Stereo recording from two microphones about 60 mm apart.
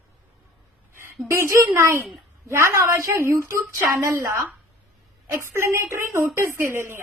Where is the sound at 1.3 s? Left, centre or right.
Right.